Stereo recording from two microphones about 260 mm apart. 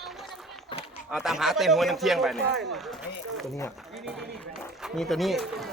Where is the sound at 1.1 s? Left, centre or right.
Centre.